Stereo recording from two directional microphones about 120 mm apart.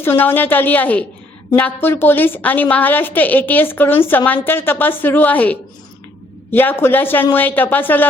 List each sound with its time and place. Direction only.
0.0 s a woman's voice: 20° left (ahead or behind)